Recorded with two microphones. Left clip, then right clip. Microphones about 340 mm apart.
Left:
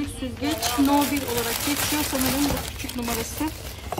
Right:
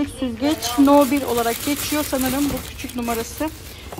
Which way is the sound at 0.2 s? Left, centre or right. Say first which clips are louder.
Right 3 dB; centre.